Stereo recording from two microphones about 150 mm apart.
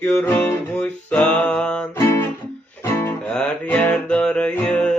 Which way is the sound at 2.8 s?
15° left (ahead or behind).